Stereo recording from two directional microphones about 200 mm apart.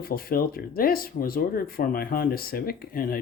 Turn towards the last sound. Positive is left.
turn(degrees=45)  # may be behind; listen again after turning